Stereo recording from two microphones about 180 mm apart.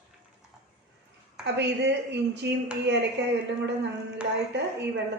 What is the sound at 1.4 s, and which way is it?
A woman's voice, 70° right (ahead or behind).